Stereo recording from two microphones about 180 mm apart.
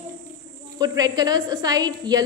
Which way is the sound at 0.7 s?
20° right (ahead or behind).